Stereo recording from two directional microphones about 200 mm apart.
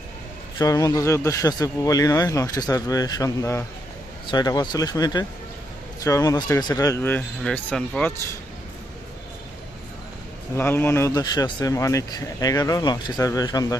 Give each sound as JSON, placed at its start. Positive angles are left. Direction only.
{"t": 0.6, "sound": "speech", "side_deg": 15}
{"t": 10.6, "sound": "speech", "side_deg": 10}